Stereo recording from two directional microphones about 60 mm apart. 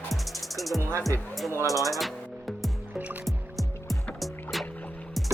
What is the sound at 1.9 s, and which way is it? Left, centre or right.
Music, centre.